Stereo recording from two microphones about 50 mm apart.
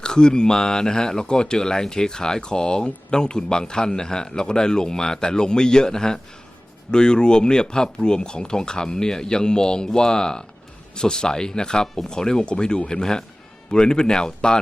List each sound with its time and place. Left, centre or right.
0.0 s speech: centre